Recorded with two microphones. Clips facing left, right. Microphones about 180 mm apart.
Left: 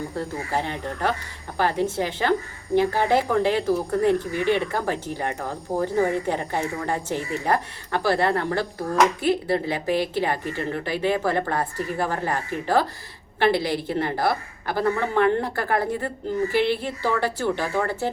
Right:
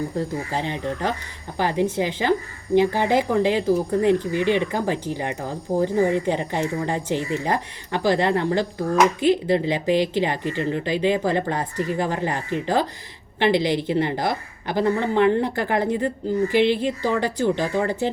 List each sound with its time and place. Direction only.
0.1 s a woman's voice: 15° right (ahead or behind)